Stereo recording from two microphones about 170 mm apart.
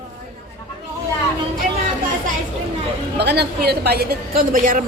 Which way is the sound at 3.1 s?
75° right (ahead or behind).